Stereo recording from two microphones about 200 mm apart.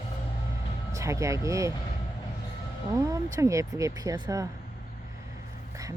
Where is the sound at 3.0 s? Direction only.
15° right (ahead or behind).